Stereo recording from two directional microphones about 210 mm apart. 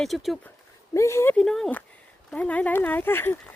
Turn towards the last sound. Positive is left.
turn(degrees=10)  # may be behind; listen again after turning